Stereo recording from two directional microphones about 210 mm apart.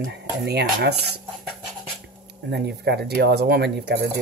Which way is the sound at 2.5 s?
50° right (ahead or behind).